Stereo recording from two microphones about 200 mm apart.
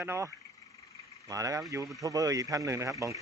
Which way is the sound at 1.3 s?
15° right (ahead or behind).